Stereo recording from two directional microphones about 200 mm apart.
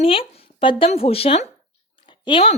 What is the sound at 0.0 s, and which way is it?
A woman's voice, 30° left (ahead or behind).